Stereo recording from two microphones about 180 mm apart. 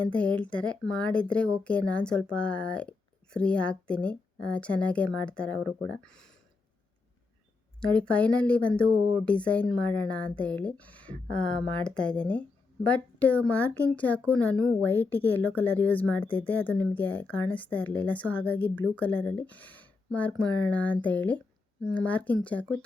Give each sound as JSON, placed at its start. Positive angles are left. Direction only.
{"t": 0.0, "sound": "a woman's voice", "side_deg": 5}
{"t": 7.8, "sound": "a woman's voice", "side_deg": 5}
{"t": 14.5, "sound": "speech", "side_deg": -20}
{"t": 14.8, "sound": "a woman's voice", "side_deg": 10}